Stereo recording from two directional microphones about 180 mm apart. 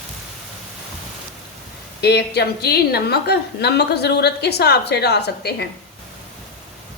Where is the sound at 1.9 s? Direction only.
65° left (ahead or behind).